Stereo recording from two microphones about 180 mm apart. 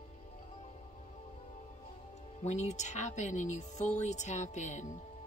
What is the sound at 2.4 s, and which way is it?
Speech, 40° left (ahead or behind).